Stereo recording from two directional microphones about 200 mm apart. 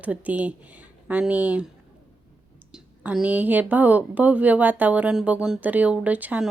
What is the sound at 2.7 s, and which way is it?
Speech, 5° right (ahead or behind).